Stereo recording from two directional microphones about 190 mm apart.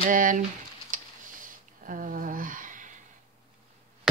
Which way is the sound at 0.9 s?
45° right (ahead or behind).